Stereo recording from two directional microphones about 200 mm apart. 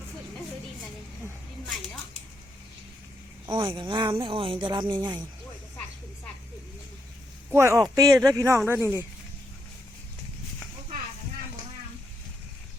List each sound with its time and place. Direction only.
3.5 s speech: 25° right (ahead or behind)
7.5 s speech: 15° right (ahead or behind)